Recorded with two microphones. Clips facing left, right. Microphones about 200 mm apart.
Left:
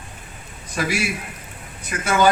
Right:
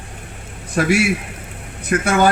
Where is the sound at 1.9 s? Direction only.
55° right (ahead or behind).